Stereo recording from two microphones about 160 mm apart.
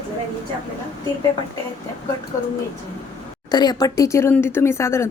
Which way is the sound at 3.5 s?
25° left (ahead or behind).